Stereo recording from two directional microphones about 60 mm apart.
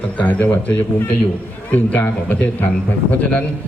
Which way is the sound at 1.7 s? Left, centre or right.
Left.